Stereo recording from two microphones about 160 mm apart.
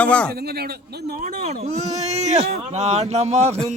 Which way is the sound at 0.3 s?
75° right (ahead or behind).